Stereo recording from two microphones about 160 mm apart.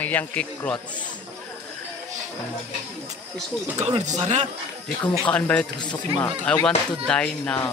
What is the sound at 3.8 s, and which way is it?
Speech, 40° right (ahead or behind).